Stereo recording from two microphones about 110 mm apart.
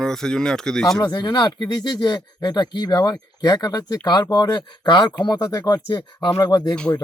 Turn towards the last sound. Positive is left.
turn(degrees=40)  # may be behind; listen again after turning